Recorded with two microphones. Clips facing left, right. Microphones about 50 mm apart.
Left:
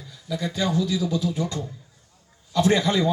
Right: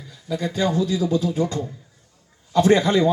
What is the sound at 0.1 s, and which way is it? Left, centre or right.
A man's voice, right.